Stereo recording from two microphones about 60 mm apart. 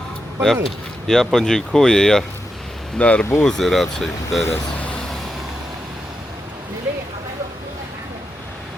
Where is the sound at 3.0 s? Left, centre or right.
Left.